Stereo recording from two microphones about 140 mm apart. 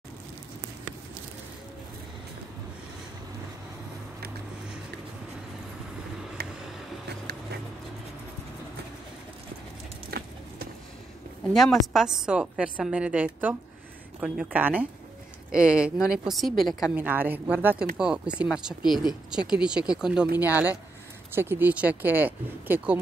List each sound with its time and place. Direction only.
10.1 s horse: 90° right
11.5 s a woman's voice: centre (ahead or behind)
16.9 s a woman's voice: 10° right (ahead or behind)